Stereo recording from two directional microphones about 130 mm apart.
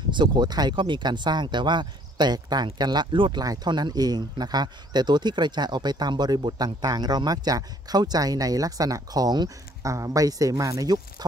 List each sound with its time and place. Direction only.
0.1 s speech: 35° right (ahead or behind)